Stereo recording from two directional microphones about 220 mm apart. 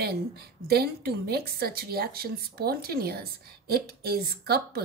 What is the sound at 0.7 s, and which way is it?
A woman's voice, 45° right (ahead or behind).